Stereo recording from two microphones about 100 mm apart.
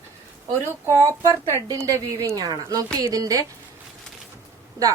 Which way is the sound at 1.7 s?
35° right (ahead or behind).